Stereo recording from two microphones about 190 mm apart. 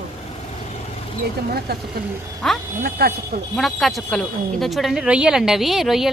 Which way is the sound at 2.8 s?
55° right (ahead or behind).